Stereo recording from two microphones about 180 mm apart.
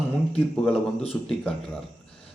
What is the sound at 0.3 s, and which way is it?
Speech, 5° left (ahead or behind).